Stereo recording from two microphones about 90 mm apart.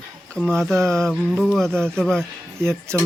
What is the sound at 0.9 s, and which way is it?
Music, 5° left (ahead or behind).